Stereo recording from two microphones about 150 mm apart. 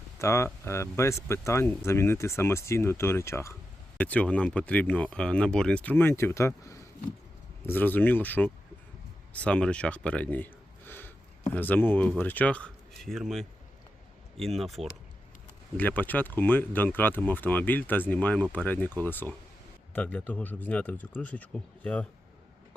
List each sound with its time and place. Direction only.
0.2 s speech: 20° left (ahead or behind); by 14.8 s centre (ahead or behind)
15.8 s speech: 10° left (ahead or behind)